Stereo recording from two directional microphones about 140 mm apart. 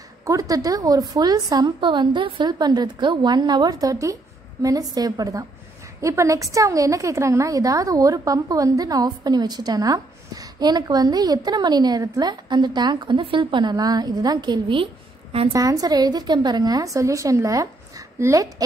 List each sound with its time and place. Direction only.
0.2 s a woman's voice: 25° right (ahead or behind)